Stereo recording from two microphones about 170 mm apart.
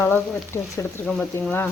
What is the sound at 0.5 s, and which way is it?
Speech, 20° left (ahead or behind).